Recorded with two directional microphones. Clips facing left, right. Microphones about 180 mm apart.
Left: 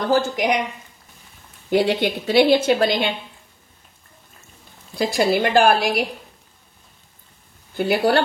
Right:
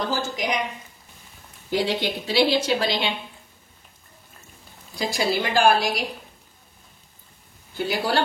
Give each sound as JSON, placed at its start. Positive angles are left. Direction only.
{"t": 0.0, "sound": "a woman's voice", "side_deg": 55}
{"t": 1.7, "sound": "a woman's voice", "side_deg": 55}
{"t": 4.9, "sound": "a woman's voice", "side_deg": 55}
{"t": 7.7, "sound": "a woman's voice", "side_deg": 55}